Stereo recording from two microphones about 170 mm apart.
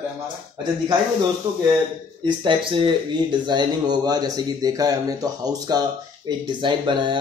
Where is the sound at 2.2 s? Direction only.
30° right (ahead or behind).